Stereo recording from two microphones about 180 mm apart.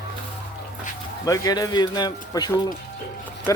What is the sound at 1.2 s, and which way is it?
Speech, 20° left (ahead or behind).